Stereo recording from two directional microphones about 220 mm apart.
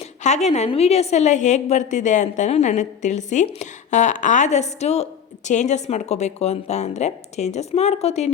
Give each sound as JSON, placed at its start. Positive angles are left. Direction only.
{"t": 0.2, "sound": "a woman's voice", "side_deg": 30}